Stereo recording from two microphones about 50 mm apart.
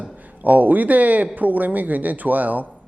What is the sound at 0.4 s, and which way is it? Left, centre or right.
Speech, right.